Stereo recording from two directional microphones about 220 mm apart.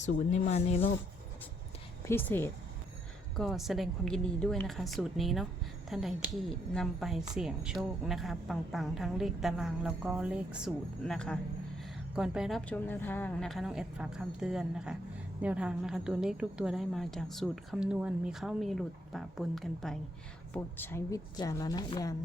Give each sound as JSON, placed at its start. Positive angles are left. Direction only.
{"t": 0.0, "sound": "speech", "side_deg": 30}
{"t": 2.0, "sound": "a woman's voice", "side_deg": 10}
{"t": 3.3, "sound": "a woman's voice", "side_deg": 0}